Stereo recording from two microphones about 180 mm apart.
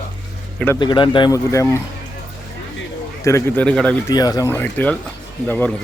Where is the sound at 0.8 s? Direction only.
25° left (ahead or behind).